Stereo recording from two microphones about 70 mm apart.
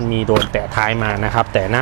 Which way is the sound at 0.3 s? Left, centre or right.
Right.